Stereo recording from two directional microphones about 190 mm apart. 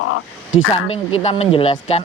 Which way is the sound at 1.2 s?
35° left (ahead or behind).